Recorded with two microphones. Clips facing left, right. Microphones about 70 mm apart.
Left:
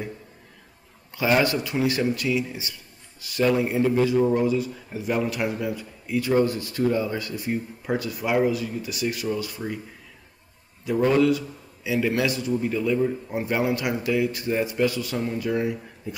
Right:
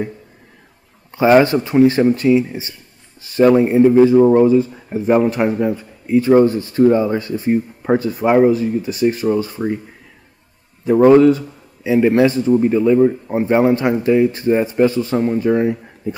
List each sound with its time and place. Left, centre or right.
1.1 s speech: right
11.1 s speech: right